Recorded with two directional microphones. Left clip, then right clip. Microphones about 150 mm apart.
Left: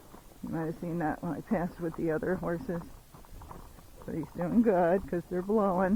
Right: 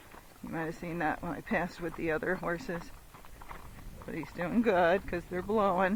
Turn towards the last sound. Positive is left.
turn(degrees=-30)  # may be behind; listen again after turning